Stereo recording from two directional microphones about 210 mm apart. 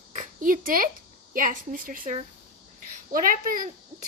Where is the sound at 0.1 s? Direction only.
40° right (ahead or behind).